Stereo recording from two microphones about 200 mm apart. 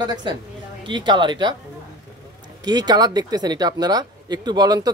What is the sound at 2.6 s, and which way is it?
Speech, 20° right (ahead or behind).